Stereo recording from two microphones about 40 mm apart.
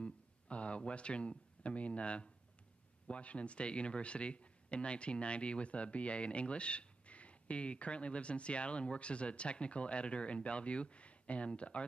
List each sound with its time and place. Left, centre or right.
0.0 s speech: left